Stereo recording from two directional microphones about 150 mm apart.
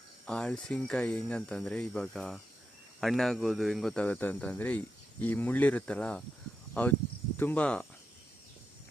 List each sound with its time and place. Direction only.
0.3 s speech: 5° left (ahead or behind)